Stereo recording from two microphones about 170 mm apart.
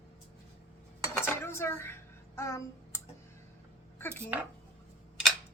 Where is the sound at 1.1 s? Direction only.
15° left (ahead or behind).